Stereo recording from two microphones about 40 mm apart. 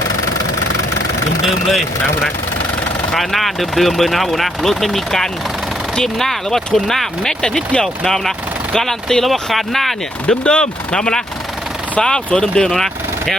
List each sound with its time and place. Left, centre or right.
3.2 s speech: centre
7.4 s speech: left; by 9.9 s centre
10.2 s speech: left
12.7 s a sound: centre